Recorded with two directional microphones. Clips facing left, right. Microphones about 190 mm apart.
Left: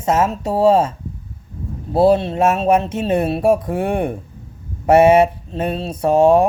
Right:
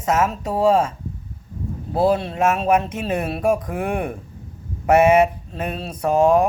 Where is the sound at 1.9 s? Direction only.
30° left (ahead or behind).